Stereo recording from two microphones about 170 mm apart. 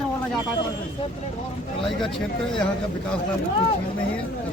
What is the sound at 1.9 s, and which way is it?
Speech, centre (ahead or behind).